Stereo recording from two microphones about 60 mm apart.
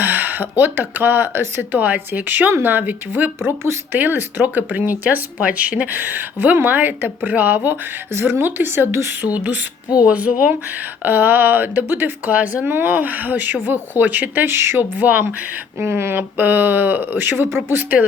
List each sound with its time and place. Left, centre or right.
0.0 s speech: right
3.4 s speech: right
3.9 s speech: right
9.2 s speech: right
14.9 s speech: right
15.9 s speech: right